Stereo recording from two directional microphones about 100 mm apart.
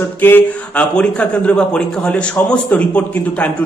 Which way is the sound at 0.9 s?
10° left (ahead or behind).